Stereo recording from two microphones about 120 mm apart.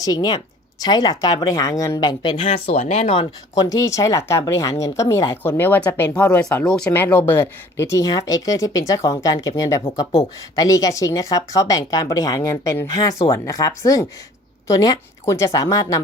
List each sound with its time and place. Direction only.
0.0 s speech: 35° left (ahead or behind)
2.3 s speech: 70° left (ahead or behind)
3.5 s speech: 30° left (ahead or behind)
12.9 s speech: 30° left (ahead or behind)
15.2 s speech: 25° left (ahead or behind)